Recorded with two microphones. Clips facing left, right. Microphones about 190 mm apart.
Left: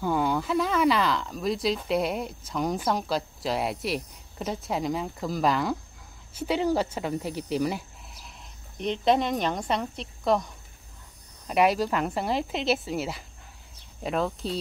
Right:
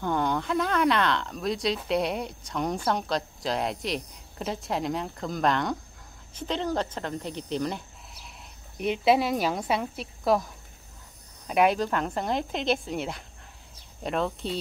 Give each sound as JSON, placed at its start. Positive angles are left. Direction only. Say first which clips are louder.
{"t": 0.0, "sound": "speech", "louder": "left 1 dB", "side_deg": 5}
{"t": 8.7, "sound": "speech", "louder": "right 1 dB", "side_deg": -5}